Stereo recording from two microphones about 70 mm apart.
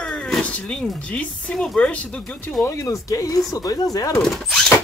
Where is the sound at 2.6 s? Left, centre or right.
Left.